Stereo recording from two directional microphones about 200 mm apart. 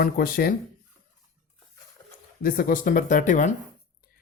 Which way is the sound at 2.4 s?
45° left (ahead or behind).